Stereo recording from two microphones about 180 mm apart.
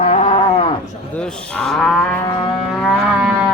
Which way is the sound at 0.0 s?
35° left (ahead or behind).